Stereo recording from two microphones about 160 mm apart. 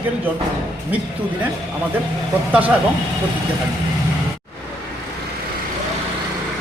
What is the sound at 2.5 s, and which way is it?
Speech, 10° right (ahead or behind).